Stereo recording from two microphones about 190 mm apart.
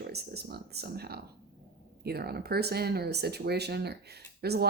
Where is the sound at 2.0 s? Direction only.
55° right (ahead or behind).